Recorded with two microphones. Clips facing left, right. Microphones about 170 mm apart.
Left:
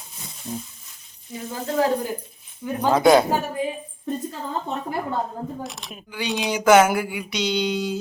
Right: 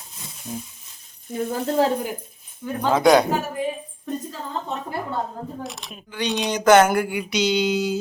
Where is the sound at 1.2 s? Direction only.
55° right (ahead or behind).